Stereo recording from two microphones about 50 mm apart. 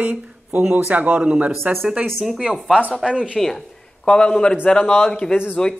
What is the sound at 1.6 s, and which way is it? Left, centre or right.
Speech, right.